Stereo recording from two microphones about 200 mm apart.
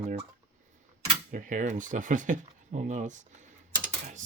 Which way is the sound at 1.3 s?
40° right (ahead or behind).